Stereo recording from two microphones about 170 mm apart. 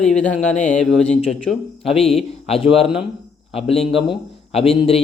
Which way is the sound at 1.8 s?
35° left (ahead or behind).